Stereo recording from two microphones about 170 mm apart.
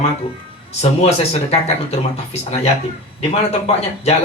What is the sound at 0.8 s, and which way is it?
A man's voice, 35° left (ahead or behind).